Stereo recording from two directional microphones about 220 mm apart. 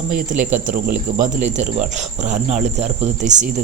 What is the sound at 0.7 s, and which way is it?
Speech, 40° right (ahead or behind).